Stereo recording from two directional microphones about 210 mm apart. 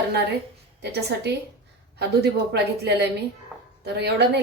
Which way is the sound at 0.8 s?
50° right (ahead or behind).